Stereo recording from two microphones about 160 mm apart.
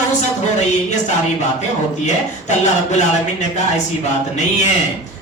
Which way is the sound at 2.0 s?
45° left (ahead or behind).